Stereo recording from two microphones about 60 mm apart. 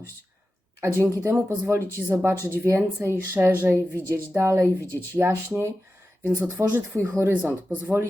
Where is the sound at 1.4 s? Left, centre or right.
Right.